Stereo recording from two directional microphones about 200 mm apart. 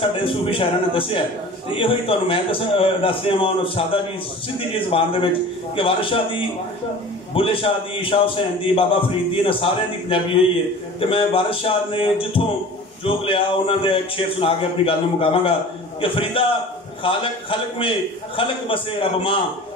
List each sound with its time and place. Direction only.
0.0 s a man's voice: 25° left (ahead or behind)
9.3 s a man's voice: 25° left (ahead or behind)